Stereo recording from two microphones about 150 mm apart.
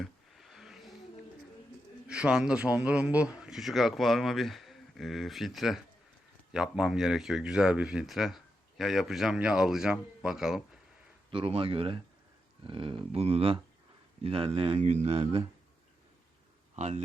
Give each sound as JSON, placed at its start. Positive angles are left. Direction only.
{"t": 0.0, "sound": "a sound", "side_deg": 0}
{"t": 2.0, "sound": "a man's voice", "side_deg": -5}
{"t": 11.3, "sound": "speech", "side_deg": -40}
{"t": 16.7, "sound": "speech", "side_deg": -50}